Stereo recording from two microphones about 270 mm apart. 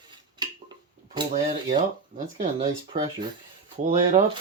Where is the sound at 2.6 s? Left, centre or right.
Centre.